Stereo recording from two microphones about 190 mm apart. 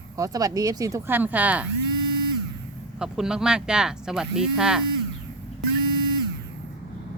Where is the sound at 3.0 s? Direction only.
5° right (ahead or behind).